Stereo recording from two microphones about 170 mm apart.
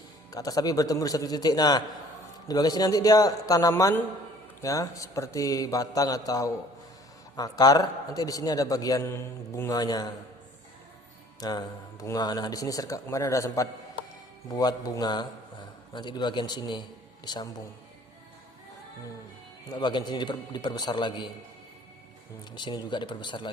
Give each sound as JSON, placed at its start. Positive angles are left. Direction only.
{"t": 0.3, "sound": "a man's voice", "side_deg": 20}
{"t": 11.3, "sound": "a man's voice", "side_deg": 20}
{"t": 19.7, "sound": "a man's voice", "side_deg": 25}
{"t": 22.5, "sound": "a man's voice", "side_deg": 25}